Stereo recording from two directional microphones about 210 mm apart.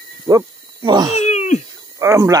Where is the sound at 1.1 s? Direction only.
30° left (ahead or behind).